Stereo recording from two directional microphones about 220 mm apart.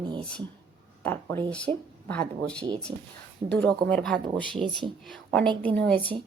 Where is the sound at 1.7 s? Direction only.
25° right (ahead or behind).